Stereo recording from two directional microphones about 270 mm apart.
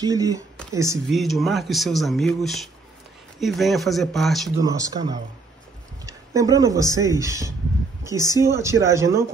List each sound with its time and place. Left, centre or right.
0.0 s speech: centre
1.1 s speech: centre
4.6 s speech: centre